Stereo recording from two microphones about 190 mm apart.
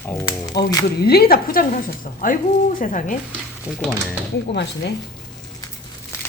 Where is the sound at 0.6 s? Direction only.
60° left (ahead or behind); by 3.2 s 45° left (ahead or behind).